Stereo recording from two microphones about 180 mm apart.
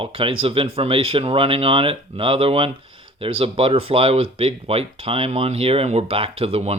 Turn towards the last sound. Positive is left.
turn(degrees=-35)  # may be behind; listen again after turning